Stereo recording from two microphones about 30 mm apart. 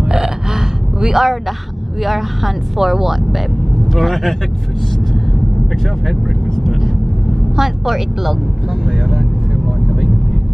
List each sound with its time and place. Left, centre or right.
0.1 s burping: centre
1.1 s speech: centre
7.5 s speech: centre
8.8 s speech: right